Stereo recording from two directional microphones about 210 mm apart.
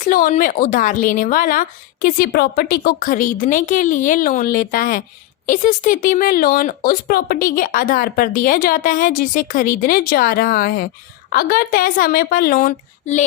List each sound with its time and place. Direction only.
0.0 s a woman's voice: 40° left (ahead or behind)